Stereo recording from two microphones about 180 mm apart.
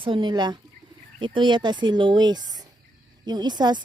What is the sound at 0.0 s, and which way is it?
Speech, 30° right (ahead or behind).